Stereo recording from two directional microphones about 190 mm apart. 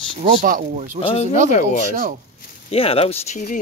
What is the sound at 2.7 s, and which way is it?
Speech, 30° left (ahead or behind).